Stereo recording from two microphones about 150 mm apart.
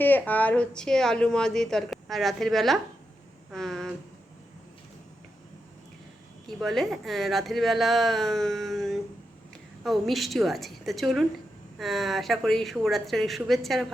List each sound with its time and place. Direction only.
0.0 s a woman's voice: 10° left (ahead or behind)
6.6 s a woman's voice: centre (ahead or behind)